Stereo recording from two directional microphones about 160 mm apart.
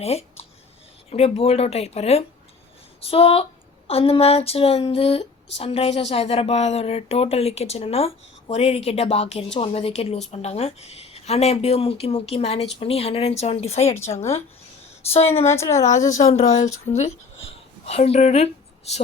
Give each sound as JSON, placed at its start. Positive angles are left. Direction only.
{"t": 0.0, "sound": "speech", "side_deg": 40}
{"t": 15.4, "sound": "a woman's voice", "side_deg": 15}
{"t": 16.1, "sound": "speech", "side_deg": 45}